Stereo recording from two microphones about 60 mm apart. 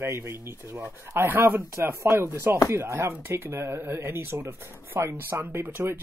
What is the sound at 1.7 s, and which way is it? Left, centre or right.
Speech, right.